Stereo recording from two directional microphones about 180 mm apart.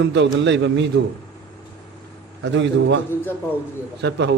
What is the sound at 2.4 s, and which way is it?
Speech, 90° right.